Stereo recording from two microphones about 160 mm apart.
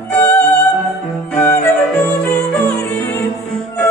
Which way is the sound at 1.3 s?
10° left (ahead or behind).